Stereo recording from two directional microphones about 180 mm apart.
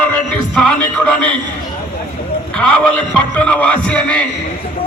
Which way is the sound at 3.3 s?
5° left (ahead or behind).